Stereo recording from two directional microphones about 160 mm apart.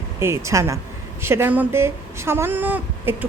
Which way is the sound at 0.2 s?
15° right (ahead or behind).